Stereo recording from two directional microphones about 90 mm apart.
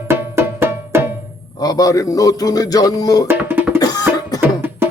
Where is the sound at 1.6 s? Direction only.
40° left (ahead or behind).